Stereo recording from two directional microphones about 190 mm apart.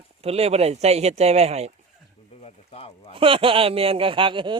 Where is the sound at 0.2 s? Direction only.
30° right (ahead or behind).